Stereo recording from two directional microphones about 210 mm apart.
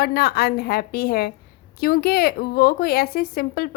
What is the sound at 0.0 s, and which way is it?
A woman's voice, 50° left (ahead or behind).